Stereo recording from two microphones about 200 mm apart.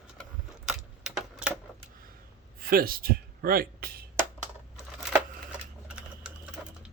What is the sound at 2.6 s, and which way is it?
Speech, 45° right (ahead or behind).